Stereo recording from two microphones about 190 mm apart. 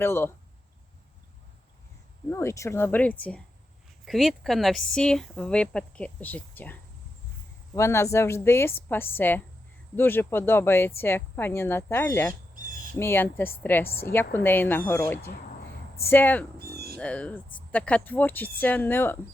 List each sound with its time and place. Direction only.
0.0 s speech: 10° left (ahead or behind)
2.3 s speech: 15° left (ahead or behind)
7.8 s speech: 15° left (ahead or behind)
16.6 s cat: 55° right (ahead or behind)
17.0 s speech: 5° left (ahead or behind)